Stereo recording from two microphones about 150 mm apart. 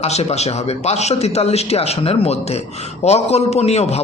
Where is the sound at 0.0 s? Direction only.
45° left (ahead or behind).